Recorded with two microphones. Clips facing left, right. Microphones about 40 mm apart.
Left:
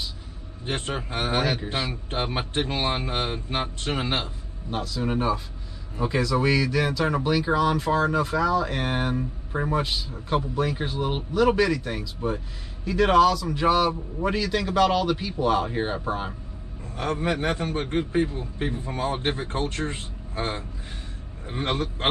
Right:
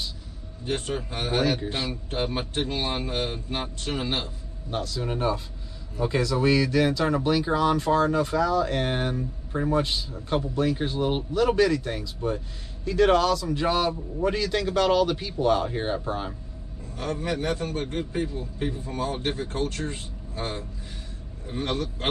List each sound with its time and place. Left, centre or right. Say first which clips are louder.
0.7 s a man's voice: even; left; by 2.0 s centre
2.0 s a man's voice: even; left
4.6 s a man's voice: left 2 dB; centre
16.9 s a man's voice: left 3 dB; left